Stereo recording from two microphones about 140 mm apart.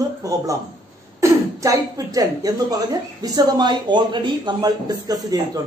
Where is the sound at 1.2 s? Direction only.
25° right (ahead or behind).